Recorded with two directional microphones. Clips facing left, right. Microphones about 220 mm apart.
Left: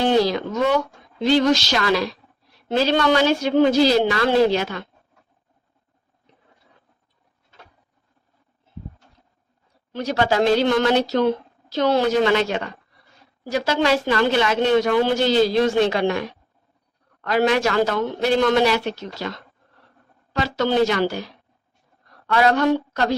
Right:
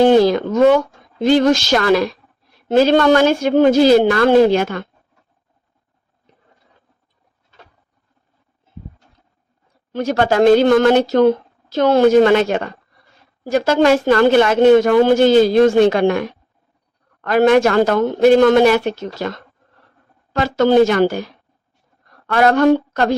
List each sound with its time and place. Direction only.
0.0 s a woman's voice: 50° right (ahead or behind)
9.9 s a woman's voice: 50° right (ahead or behind)